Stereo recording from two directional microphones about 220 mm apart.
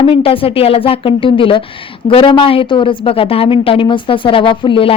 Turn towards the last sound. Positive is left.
turn(degrees=25)  # may be behind; listen again after turning